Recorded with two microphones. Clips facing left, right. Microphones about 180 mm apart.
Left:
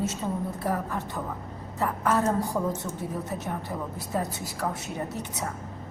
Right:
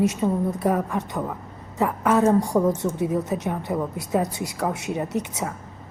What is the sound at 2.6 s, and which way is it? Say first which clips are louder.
A woman's voice: right 8 dB; 80° right.